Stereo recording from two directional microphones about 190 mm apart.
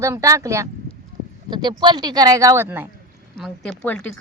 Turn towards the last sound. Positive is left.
turn(degrees=5)  # may be behind; listen again after turning